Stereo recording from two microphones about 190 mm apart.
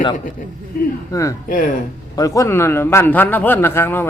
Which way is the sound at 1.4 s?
45° left (ahead or behind).